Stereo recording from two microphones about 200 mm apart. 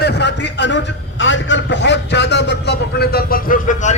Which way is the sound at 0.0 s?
55° left (ahead or behind).